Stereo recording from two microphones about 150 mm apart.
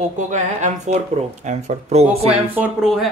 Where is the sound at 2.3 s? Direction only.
10° right (ahead or behind).